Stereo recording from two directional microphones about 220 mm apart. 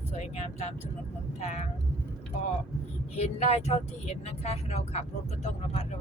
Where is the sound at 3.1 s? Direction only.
30° left (ahead or behind).